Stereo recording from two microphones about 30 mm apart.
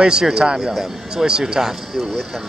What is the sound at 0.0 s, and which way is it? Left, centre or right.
Speech, right.